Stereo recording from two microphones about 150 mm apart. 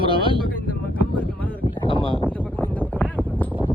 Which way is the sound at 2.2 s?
10° left (ahead or behind).